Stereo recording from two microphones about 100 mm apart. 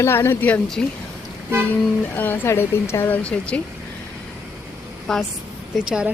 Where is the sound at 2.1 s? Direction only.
20° left (ahead or behind).